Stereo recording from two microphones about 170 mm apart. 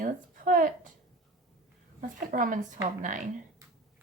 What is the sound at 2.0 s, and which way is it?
Speech, 50° right (ahead or behind).